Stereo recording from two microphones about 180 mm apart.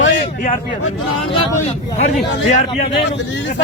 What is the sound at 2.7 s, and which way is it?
Speech, 30° left (ahead or behind).